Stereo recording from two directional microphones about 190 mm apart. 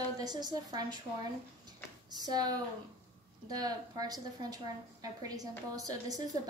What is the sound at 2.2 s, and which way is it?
A woman's voice, 20° right (ahead or behind).